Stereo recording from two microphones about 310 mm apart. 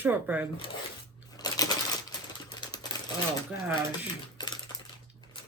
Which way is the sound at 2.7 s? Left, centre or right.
Centre.